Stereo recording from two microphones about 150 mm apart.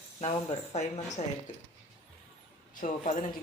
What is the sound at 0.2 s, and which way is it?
Speech, 45° left (ahead or behind).